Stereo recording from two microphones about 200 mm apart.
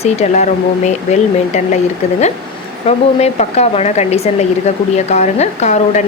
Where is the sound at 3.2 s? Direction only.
30° left (ahead or behind).